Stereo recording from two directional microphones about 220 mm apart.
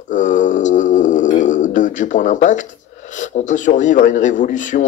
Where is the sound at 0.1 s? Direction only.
35° left (ahead or behind).